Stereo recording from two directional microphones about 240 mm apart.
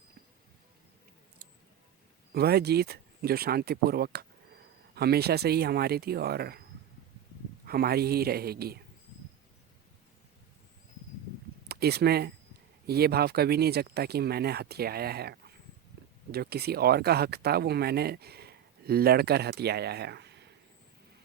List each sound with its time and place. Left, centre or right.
2.3 s speech: right
7.7 s speech: right
11.7 s speech: right